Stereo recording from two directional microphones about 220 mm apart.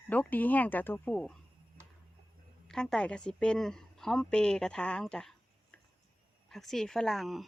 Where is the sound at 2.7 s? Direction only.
5° left (ahead or behind).